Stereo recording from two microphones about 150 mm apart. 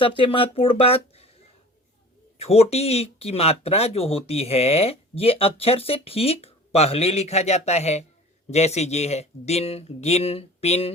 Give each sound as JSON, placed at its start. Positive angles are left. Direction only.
{"t": 0.0, "sound": "speech", "side_deg": 35}
{"t": 2.4, "sound": "speech", "side_deg": 45}